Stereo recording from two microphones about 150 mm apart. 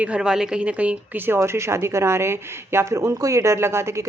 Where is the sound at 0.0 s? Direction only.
5° right (ahead or behind).